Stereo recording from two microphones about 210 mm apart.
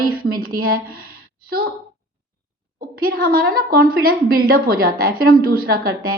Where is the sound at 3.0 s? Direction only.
45° right (ahead or behind).